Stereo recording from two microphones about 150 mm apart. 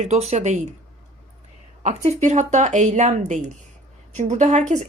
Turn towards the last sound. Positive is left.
turn(degrees=-50)  # may be behind; listen again after turning